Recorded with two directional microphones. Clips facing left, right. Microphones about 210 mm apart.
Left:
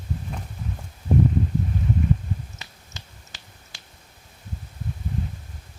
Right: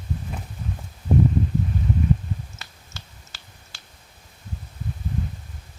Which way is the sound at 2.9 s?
20° left (ahead or behind).